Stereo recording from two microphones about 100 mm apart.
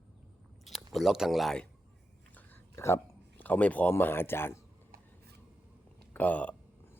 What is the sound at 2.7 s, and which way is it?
Speech, 30° left (ahead or behind).